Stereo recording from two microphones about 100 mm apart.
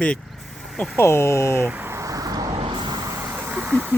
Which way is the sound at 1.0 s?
25° left (ahead or behind).